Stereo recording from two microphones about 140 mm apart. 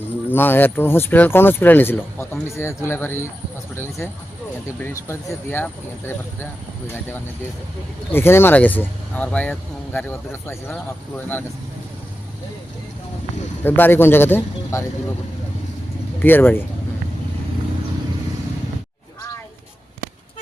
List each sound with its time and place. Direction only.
0.3 s speech: 15° left (ahead or behind)
13.7 s speech: 15° left (ahead or behind)
16.2 s speech: 15° left (ahead or behind)